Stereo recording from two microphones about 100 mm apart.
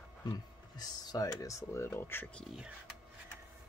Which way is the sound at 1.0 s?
40° left (ahead or behind).